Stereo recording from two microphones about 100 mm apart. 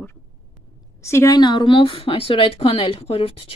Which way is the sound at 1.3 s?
50° left (ahead or behind).